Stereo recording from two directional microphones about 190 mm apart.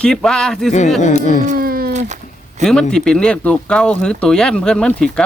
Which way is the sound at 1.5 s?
50° right (ahead or behind).